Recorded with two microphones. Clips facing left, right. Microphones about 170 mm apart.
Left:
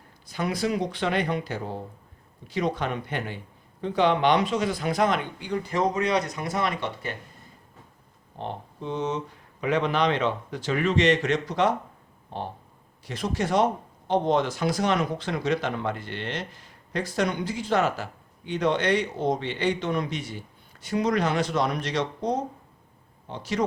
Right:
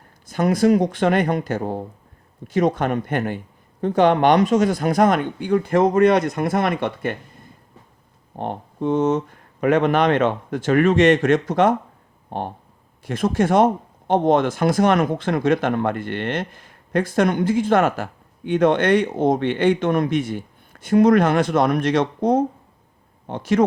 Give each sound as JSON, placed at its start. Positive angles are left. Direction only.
{"t": 0.3, "sound": "speech", "side_deg": -45}
{"t": 8.4, "sound": "speech", "side_deg": -55}